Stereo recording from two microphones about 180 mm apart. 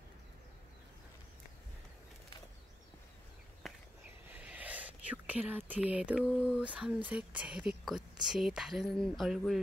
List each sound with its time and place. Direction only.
4.3 s whispering: 5° right (ahead or behind)
6.4 s a woman's voice: 5° right (ahead or behind)